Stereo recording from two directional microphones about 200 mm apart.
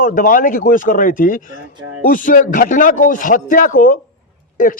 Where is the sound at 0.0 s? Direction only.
45° left (ahead or behind).